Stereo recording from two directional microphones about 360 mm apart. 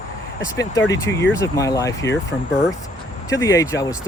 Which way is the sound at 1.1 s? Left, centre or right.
Centre.